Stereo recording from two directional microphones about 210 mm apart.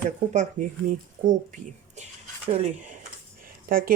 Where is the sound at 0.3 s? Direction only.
35° right (ahead or behind).